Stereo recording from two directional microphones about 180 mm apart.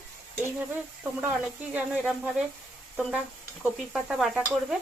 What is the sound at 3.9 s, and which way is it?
Stir, centre (ahead or behind).